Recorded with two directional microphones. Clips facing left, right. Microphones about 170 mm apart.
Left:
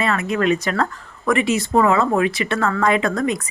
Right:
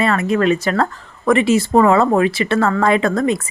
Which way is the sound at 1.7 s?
40° right (ahead or behind).